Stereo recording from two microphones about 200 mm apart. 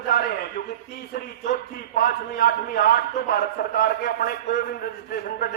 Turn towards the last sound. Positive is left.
turn(degrees=50)  # may be behind; listen again after turning